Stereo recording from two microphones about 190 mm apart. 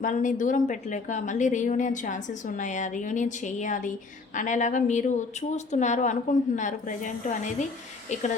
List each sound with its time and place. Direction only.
0.0 s a woman's voice: 45° left (ahead or behind)